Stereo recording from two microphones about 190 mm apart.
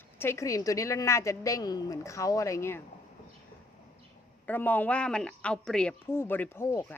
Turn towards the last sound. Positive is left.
turn(degrees=15)  # may be behind; listen again after turning